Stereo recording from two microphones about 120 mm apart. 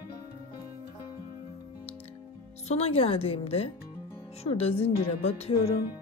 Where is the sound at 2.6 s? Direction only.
55° left (ahead or behind).